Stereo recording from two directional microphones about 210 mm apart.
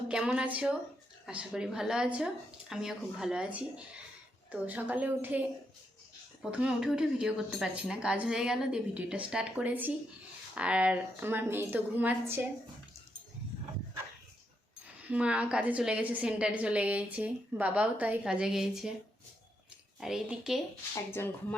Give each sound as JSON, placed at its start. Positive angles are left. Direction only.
{"t": 0.1, "sound": "a woman's voice", "side_deg": -5}
{"t": 15.1, "sound": "a woman's voice", "side_deg": -5}
{"t": 20.0, "sound": "a woman's voice", "side_deg": 0}
{"t": 20.9, "sound": "a woman's voice", "side_deg": 10}